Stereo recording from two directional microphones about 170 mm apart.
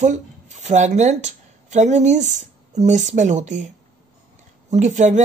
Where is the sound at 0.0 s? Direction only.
45° right (ahead or behind).